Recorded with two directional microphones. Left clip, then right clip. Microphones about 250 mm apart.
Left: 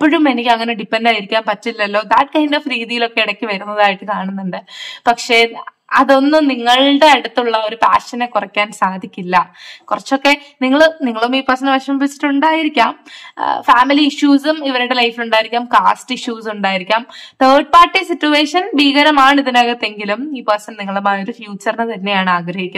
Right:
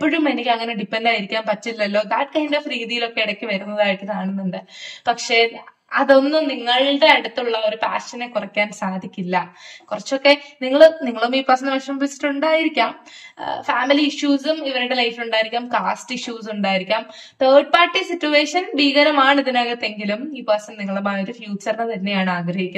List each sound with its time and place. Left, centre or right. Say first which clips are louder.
0.0 s a woman's voice: left 6 dB; centre
5.0 s a woman's voice: left 5 dB; centre
9.8 s a woman's voice: left 3 dB; centre